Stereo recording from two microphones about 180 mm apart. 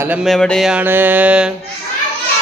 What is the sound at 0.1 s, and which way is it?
Mantra, centre (ahead or behind).